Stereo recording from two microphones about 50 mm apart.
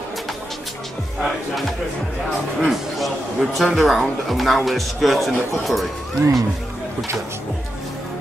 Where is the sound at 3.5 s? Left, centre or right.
Centre.